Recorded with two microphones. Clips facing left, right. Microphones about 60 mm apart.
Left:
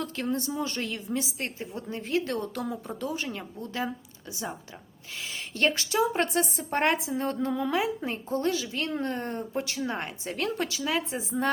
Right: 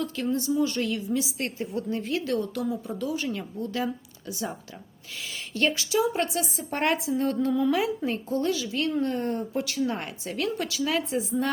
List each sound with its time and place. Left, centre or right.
0.0 s a woman's voice: left
2.3 s a woman's voice: left
3.2 s a woman's voice: left
5.3 s a woman's voice: left
8.4 s a woman's voice: left
10.3 s a woman's voice: left